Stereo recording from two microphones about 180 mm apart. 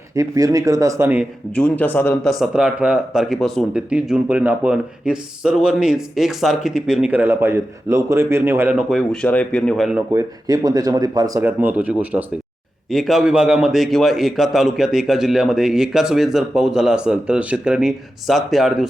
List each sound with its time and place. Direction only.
0.1 s speech: 20° right (ahead or behind)
1.5 s speech: 10° left (ahead or behind); by 8.8 s 10° right (ahead or behind)
8.9 s speech: 5° left (ahead or behind)
10.1 s speech: 15° right (ahead or behind); by 18.9 s centre (ahead or behind)